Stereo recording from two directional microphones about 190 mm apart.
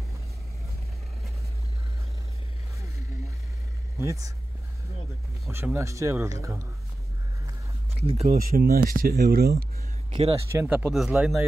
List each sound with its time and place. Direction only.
4.0 s speech: 15° right (ahead or behind)
5.5 s speech: 15° right (ahead or behind)
8.1 s speech: 35° right (ahead or behind)
8.4 s speech: 50° right (ahead or behind)
10.1 s speech: 30° right (ahead or behind)
10.5 s speech: 10° right (ahead or behind)